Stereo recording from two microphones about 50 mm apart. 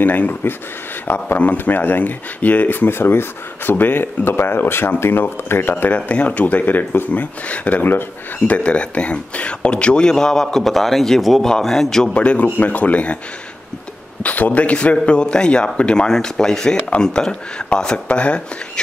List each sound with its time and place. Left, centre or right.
0.0 s speech: left
2.9 s speech: left
5.9 s speech: left; by 12.1 s centre
12.1 s speech: left
14.2 s speech: left